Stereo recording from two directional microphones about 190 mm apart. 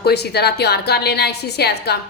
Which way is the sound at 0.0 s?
60° left (ahead or behind).